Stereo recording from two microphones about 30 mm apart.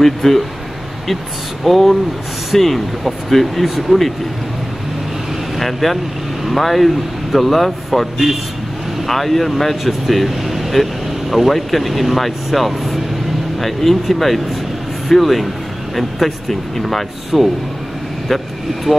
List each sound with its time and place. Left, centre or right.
0.0 s speech: centre
1.6 s speech: centre
3.6 s speech: centre
5.6 s speech: centre